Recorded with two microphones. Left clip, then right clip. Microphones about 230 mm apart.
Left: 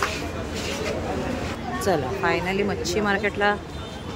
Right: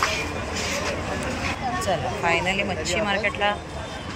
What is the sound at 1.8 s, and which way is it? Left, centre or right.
Speech, left.